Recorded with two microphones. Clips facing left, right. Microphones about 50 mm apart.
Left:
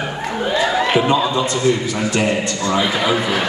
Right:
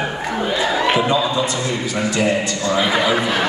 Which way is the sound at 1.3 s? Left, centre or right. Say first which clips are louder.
Left 1 dB; right.